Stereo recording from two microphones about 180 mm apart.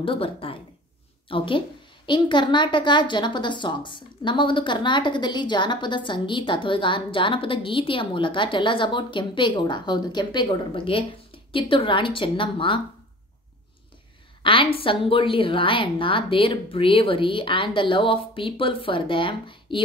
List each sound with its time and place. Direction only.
0.0 s a woman's voice: 30° left (ahead or behind)
14.4 s a woman's voice: 30° left (ahead or behind)